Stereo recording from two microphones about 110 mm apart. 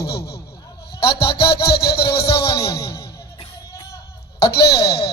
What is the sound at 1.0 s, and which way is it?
Music, 55° left (ahead or behind).